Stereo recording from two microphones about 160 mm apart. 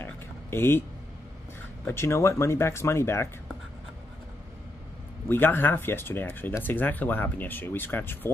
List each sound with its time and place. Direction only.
0.0 s a sound: 15° left (ahead or behind)
1.9 s speech: 15° left (ahead or behind)
5.3 s speech: 10° left (ahead or behind)